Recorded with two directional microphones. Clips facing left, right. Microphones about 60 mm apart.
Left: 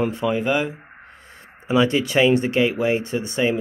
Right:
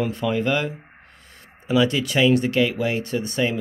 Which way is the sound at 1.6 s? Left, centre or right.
Left.